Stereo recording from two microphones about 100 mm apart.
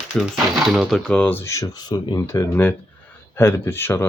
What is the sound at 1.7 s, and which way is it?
Speech, 45° left (ahead or behind).